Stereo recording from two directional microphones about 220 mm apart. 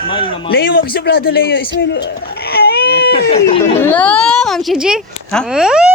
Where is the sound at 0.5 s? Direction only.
45° left (ahead or behind).